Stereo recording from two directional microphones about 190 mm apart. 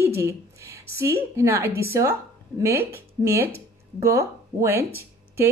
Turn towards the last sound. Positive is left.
turn(degrees=-10)  # may be behind; listen again after turning